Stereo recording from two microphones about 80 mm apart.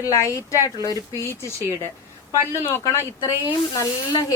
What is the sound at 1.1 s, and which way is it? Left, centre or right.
Speech, left.